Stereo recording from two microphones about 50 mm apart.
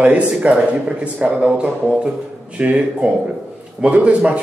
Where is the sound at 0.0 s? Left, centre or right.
Right.